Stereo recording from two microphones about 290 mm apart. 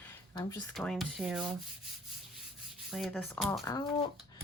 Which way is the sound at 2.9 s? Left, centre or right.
Centre.